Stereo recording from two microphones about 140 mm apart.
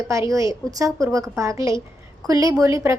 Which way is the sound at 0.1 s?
20° right (ahead or behind).